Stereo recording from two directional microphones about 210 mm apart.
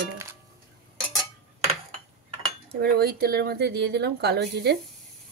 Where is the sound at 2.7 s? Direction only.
45° right (ahead or behind).